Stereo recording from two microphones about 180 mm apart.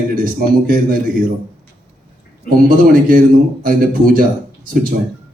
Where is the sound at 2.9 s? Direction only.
50° right (ahead or behind).